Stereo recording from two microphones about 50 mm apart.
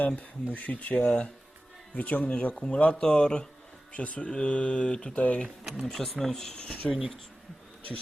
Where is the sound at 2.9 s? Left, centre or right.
Centre.